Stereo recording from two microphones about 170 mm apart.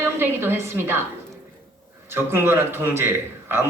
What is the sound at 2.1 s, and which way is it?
A woman's voice, 15° right (ahead or behind).